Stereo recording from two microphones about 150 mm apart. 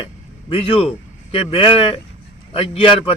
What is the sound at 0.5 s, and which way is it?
Speech, 40° left (ahead or behind).